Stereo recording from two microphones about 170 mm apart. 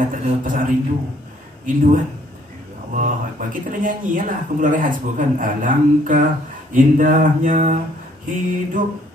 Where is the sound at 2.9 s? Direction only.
50° right (ahead or behind).